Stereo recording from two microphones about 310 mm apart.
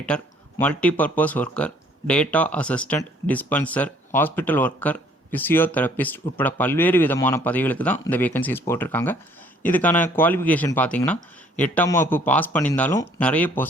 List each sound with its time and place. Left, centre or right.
0.1 s speech: centre